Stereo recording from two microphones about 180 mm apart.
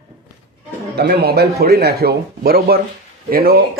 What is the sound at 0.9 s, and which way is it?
Speech, 65° right (ahead or behind).